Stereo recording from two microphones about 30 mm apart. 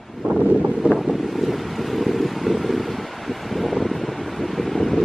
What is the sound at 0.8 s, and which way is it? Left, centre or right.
Boat, right.